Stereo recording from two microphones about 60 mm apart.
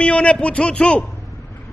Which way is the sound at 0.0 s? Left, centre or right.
Centre.